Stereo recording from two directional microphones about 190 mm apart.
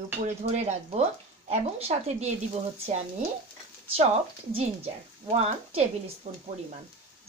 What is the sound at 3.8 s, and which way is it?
Speech, 30° right (ahead or behind).